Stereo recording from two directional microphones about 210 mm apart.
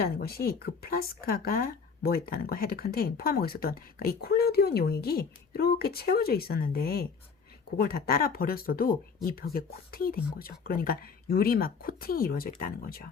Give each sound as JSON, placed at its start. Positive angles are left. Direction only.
{"t": 0.0, "sound": "speech", "side_deg": 45}